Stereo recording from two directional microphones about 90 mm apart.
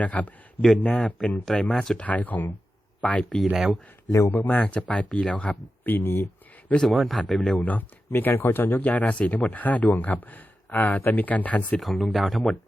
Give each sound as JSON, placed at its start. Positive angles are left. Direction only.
{"t": 0.0, "sound": "speech", "side_deg": 15}
{"t": 2.0, "sound": "speech", "side_deg": 15}
{"t": 4.3, "sound": "speech", "side_deg": 20}
{"t": 6.8, "sound": "speech", "side_deg": 0}
{"t": 7.6, "sound": "speech", "side_deg": 20}
{"t": 11.8, "sound": "speech", "side_deg": 0}